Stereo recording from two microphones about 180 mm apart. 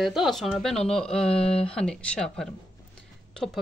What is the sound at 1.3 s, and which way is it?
Speech, 35° left (ahead or behind).